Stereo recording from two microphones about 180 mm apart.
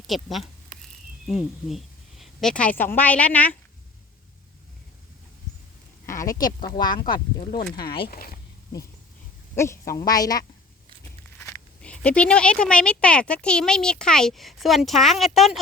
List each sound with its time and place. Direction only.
0.1 s a woman's voice: centre (ahead or behind)
6.1 s a sound: 15° left (ahead or behind)
6.7 s speech: 25° left (ahead or behind)
8.1 s speech: 55° left (ahead or behind)
9.9 s speech: 20° left (ahead or behind); by 15.6 s centre (ahead or behind)